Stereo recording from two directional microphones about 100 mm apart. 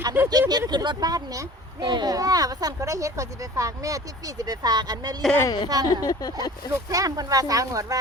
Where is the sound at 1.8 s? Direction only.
50° right (ahead or behind).